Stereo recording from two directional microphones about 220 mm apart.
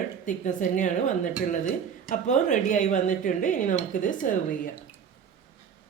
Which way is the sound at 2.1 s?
35° left (ahead or behind).